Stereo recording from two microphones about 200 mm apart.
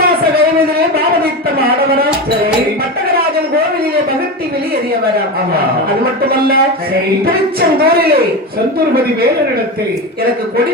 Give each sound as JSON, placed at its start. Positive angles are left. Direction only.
{"t": 0.9, "sound": "a sound", "side_deg": -50}
{"t": 6.3, "sound": "a man's voice", "side_deg": -50}
{"t": 7.8, "sound": "a man's voice", "side_deg": -50}